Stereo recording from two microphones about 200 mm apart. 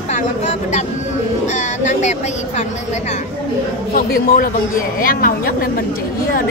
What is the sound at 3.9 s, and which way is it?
Speech, 45° left (ahead or behind).